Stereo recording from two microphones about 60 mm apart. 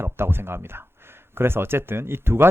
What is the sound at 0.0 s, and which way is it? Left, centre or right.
Speech, right.